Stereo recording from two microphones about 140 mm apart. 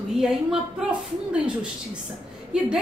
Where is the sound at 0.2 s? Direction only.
5° right (ahead or behind).